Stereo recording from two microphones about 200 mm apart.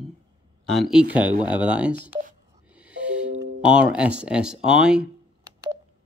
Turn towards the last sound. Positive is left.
turn(degrees=-20)  # may be behind; listen again after turning